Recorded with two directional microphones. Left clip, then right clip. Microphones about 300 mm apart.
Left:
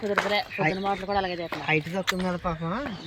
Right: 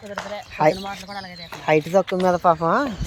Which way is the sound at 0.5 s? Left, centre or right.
Centre.